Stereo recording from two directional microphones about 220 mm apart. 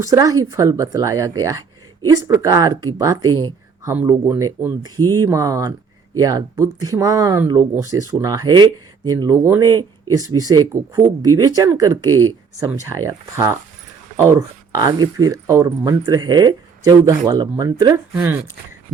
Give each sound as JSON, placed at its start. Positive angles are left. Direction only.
{"t": 0.0, "sound": "speech", "side_deg": -15}